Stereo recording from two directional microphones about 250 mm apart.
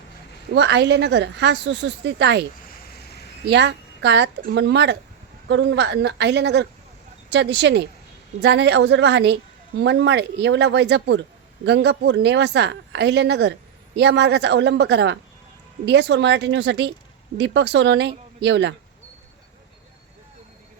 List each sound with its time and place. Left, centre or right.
0.5 s a woman's voice: right
3.4 s a woman's voice: right